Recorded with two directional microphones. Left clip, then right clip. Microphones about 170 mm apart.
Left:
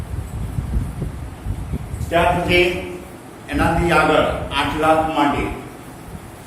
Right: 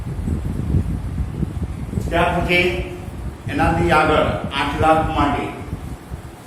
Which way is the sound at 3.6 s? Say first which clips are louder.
Even; centre (ahead or behind).